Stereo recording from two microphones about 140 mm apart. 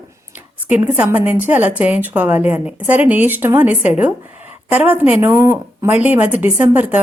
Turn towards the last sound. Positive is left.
turn(degrees=-10)  # may be behind; listen again after turning